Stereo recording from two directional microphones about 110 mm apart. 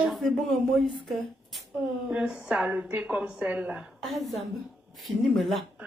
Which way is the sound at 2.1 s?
10° right (ahead or behind).